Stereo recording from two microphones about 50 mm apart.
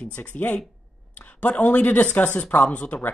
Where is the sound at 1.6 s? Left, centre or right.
Left.